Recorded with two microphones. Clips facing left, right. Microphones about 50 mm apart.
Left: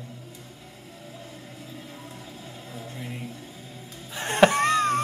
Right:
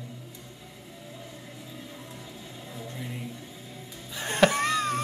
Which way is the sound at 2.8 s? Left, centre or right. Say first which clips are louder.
Left 1 dB; centre.